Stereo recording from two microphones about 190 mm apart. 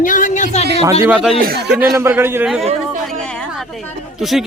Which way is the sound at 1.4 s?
55° right (ahead or behind).